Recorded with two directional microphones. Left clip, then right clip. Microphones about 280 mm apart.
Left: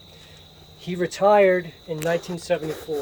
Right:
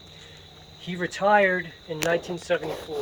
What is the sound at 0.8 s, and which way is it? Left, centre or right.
Speech, left.